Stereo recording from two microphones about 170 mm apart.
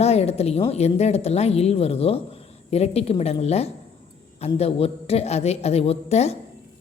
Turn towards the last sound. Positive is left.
turn(degrees=40)  # may be behind; listen again after turning